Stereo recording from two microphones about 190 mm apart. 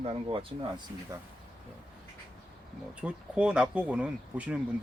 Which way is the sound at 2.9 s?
5° right (ahead or behind).